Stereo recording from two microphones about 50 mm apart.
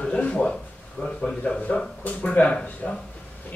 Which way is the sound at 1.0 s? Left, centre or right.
Centre.